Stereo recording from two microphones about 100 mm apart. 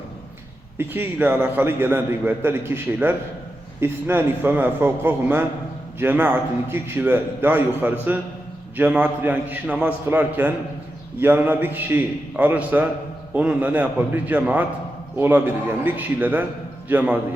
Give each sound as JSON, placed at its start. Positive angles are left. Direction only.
{"t": 0.8, "sound": "a man's voice", "side_deg": -20}